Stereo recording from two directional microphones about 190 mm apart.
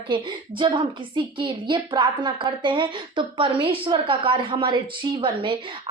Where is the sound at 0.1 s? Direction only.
25° right (ahead or behind).